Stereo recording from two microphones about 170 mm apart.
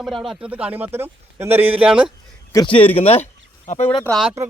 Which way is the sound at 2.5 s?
25° left (ahead or behind).